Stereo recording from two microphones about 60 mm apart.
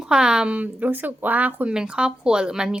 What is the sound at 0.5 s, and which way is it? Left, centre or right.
Speech, right.